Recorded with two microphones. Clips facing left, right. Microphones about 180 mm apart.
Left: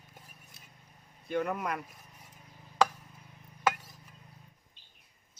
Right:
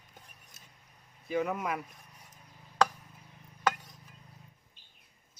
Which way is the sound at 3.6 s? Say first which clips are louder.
Left 1 dB; 5° left (ahead or behind).